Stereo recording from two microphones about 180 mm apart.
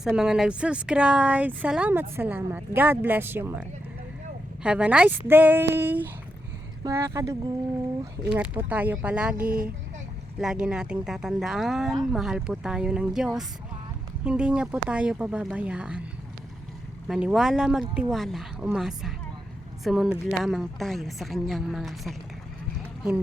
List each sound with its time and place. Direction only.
0.2 s speech: 5° right (ahead or behind)
9.4 s speech: 50° right (ahead or behind)
10.4 s a woman's voice: 5° right (ahead or behind)
17.1 s a woman's voice: 5° right (ahead or behind)